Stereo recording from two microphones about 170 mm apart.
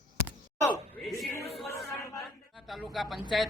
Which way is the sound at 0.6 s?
20° left (ahead or behind).